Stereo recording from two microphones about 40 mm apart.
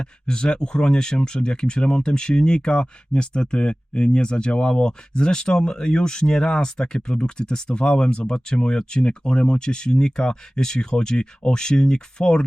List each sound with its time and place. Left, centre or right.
0.0 s speech: centre